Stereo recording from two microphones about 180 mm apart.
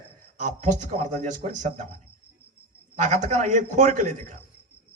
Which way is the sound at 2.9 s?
40° right (ahead or behind).